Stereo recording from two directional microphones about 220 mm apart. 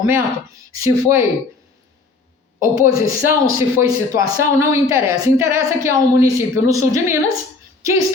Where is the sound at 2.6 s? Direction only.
40° left (ahead or behind).